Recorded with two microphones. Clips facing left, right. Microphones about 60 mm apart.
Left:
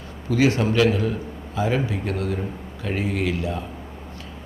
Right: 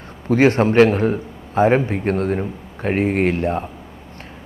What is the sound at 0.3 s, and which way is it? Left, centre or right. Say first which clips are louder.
A man's voice: right 5 dB; right.